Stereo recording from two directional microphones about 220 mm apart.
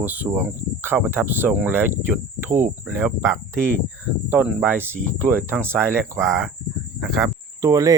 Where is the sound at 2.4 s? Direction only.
35° right (ahead or behind).